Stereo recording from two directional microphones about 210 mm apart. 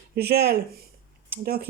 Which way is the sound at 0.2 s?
50° right (ahead or behind).